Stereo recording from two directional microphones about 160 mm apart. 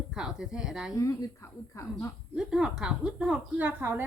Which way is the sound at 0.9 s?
20° left (ahead or behind).